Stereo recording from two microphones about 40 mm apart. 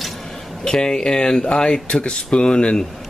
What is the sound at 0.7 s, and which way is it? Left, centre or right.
Speech, centre.